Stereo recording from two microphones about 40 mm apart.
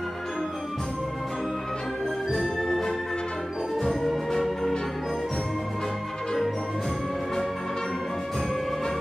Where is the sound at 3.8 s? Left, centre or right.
Centre.